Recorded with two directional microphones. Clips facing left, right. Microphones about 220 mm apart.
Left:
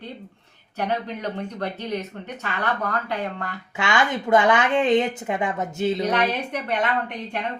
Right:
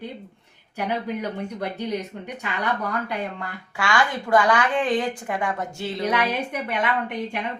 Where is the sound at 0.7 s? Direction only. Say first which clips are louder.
Even; 10° right (ahead or behind).